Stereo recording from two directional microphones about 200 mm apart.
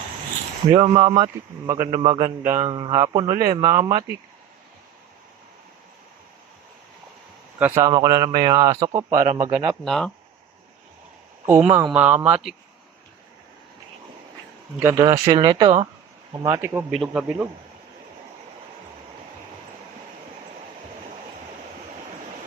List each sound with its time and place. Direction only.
0.7 s speech: 25° right (ahead or behind)
7.6 s speech: 15° right (ahead or behind)
9.1 s speech: 35° right (ahead or behind)
9.6 s speech: centre (ahead or behind)
11.4 s speech: 10° right (ahead or behind)
14.8 s speech: 15° right (ahead or behind)
16.3 s speech: 15° right (ahead or behind)